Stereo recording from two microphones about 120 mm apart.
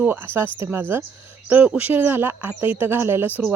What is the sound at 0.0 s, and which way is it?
Speech, 15° right (ahead or behind).